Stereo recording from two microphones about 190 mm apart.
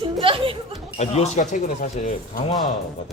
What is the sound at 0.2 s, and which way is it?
Chuckle, 30° right (ahead or behind).